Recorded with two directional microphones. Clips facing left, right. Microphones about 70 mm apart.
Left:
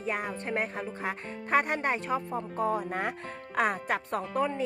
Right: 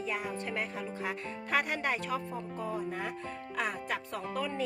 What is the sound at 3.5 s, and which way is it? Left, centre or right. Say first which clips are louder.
Speech: left 7 dB; left.